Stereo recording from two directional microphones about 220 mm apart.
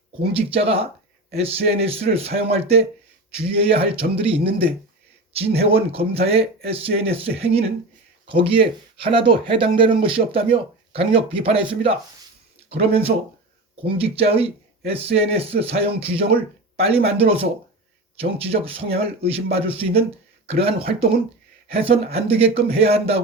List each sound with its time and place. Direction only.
0.3 s speech: 25° right (ahead or behind)